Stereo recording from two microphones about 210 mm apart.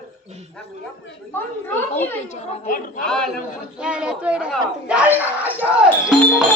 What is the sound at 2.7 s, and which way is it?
Speech, 40° left (ahead or behind).